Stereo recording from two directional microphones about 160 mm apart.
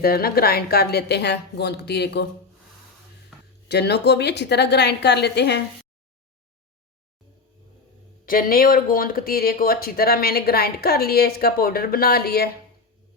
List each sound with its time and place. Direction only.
0.0 s a woman's voice: 70° left (ahead or behind); by 2.2 s 90° left
3.7 s a woman's voice: 90° left
8.3 s speech: 65° left (ahead or behind)